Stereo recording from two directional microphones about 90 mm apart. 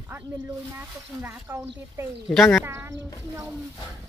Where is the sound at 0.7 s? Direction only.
30° right (ahead or behind).